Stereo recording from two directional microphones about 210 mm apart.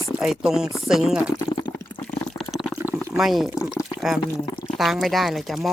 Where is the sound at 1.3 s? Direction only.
20° left (ahead or behind).